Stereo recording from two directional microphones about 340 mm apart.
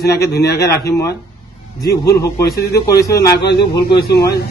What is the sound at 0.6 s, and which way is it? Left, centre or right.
Speech, centre.